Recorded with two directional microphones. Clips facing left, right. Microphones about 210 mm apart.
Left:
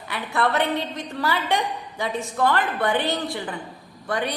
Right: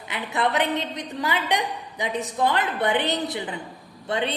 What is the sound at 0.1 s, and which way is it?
A woman's voice, 20° right (ahead or behind).